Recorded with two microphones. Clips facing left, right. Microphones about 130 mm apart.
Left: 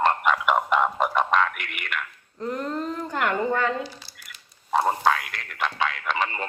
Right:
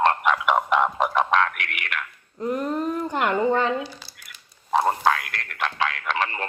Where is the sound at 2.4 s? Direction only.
15° right (ahead or behind).